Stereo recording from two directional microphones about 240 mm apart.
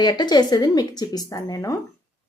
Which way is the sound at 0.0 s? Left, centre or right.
Centre.